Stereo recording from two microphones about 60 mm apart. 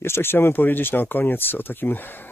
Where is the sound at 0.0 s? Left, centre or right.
Left.